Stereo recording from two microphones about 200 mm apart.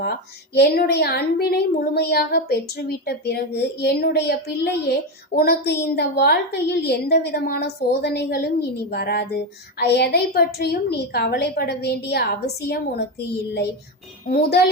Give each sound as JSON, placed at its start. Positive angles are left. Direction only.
{"t": 0.0, "sound": "a woman's voice", "side_deg": 55}